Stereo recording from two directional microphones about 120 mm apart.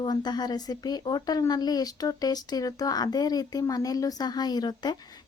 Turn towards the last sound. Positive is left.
turn(degrees=35)  # may be behind; listen again after turning